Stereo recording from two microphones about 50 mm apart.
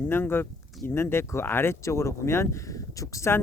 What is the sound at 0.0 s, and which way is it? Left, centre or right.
Speech, left.